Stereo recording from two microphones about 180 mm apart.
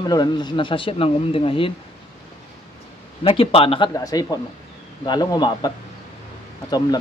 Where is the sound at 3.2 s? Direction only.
30° left (ahead or behind).